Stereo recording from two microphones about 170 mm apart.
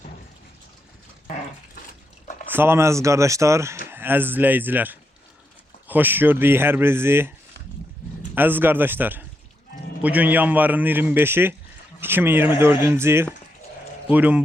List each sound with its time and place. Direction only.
2.5 s a man's voice: 15° right (ahead or behind)
8.4 s a man's voice: 10° right (ahead or behind)